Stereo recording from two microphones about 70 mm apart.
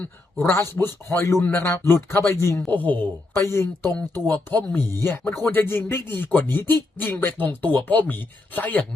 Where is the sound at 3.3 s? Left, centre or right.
Left.